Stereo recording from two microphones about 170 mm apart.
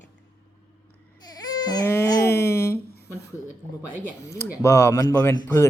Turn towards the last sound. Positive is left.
turn(degrees=15)  # may be behind; listen again after turning